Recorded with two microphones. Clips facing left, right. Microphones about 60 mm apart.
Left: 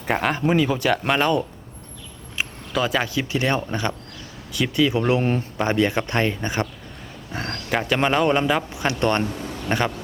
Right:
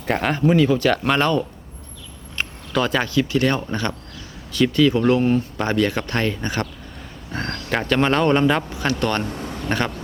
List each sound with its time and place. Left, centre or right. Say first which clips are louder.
0.0 s a man's voice: right 2 dB; centre
2.4 s a sound: right 2 dB; centre
3.1 s a man's voice: right 3 dB; centre
8.7 s speech: even; centre